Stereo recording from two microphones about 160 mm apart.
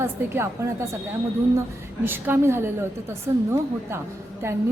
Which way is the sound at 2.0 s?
15° right (ahead or behind).